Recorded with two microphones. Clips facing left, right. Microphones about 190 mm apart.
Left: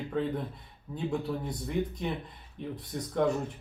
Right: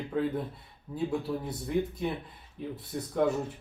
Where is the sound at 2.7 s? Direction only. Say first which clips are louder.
Even; 5° right (ahead or behind).